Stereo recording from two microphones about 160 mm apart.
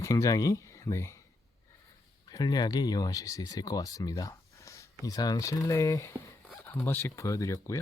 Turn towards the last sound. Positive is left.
turn(degrees=20)  # may be behind; listen again after turning